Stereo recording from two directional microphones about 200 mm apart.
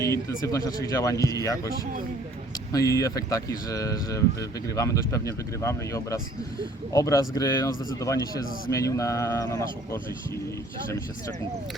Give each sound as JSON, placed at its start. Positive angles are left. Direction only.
{"t": 0.0, "sound": "speech", "side_deg": 15}
{"t": 2.7, "sound": "speech", "side_deg": 15}